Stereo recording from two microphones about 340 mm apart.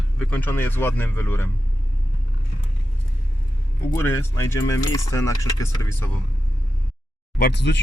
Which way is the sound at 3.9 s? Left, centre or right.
Centre.